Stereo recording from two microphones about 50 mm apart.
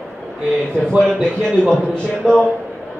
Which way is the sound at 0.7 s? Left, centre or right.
Centre.